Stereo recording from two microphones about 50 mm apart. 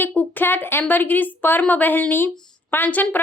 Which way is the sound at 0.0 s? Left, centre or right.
Left.